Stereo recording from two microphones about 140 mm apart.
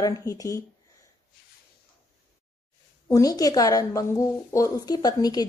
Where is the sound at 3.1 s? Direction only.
25° left (ahead or behind).